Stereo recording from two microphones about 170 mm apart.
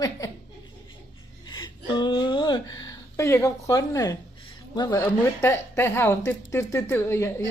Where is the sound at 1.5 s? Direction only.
25° left (ahead or behind).